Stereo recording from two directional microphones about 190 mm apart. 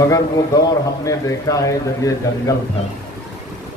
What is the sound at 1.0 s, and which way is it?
A man's voice, 15° left (ahead or behind).